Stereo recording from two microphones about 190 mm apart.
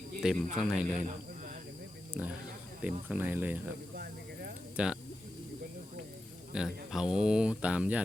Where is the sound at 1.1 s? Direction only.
40° right (ahead or behind).